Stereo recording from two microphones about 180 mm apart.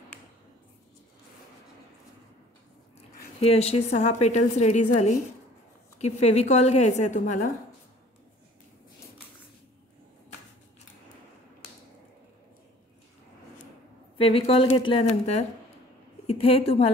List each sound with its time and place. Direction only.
3.3 s a woman's voice: 35° left (ahead or behind)
14.1 s a woman's voice: 30° left (ahead or behind)